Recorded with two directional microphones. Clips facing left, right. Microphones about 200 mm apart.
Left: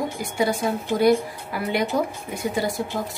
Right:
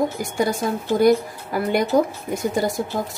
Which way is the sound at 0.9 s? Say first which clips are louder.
Right 3 dB; 45° right (ahead or behind).